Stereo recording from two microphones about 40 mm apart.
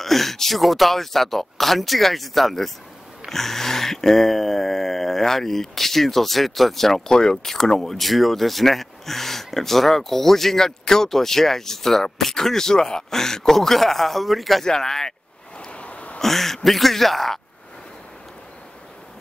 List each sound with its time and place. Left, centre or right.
0.0 s speech: centre
14.6 s speech: centre
15.5 s vehicle: left
16.2 s speech: centre